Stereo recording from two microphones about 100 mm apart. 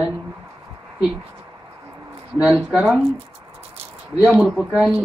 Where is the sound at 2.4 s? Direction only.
10° right (ahead or behind).